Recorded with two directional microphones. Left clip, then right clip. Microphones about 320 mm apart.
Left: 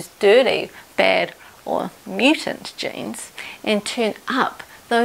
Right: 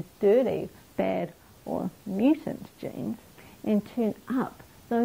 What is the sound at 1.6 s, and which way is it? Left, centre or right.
Speech, centre.